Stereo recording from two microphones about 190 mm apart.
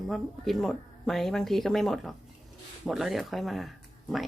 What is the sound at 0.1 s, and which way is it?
Speech, centre (ahead or behind).